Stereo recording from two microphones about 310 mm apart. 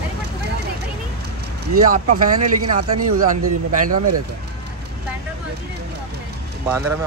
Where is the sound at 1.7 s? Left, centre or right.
Right.